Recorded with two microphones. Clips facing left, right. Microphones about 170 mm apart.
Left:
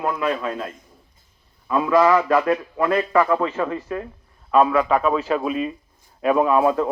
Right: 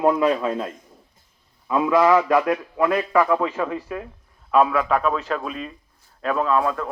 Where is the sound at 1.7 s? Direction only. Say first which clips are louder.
Even; 15° right (ahead or behind); by 6.9 s 20° left (ahead or behind).